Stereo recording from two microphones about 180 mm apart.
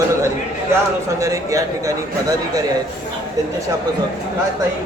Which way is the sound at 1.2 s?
20° right (ahead or behind).